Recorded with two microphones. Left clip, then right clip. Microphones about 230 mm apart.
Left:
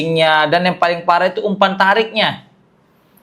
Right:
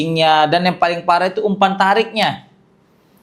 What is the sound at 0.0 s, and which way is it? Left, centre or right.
Speech, left.